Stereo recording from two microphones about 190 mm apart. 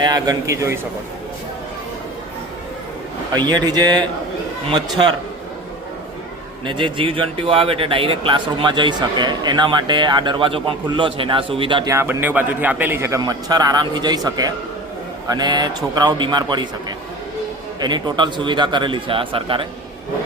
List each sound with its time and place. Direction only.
0.0 s a man's voice: 20° right (ahead or behind)
3.3 s speech: 20° right (ahead or behind)
6.7 s speech: 25° right (ahead or behind)
11.9 s a man's voice: 10° right (ahead or behind)
17.7 s speech: 25° right (ahead or behind)